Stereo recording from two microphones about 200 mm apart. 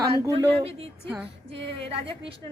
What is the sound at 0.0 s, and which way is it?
Speech, 25° right (ahead or behind).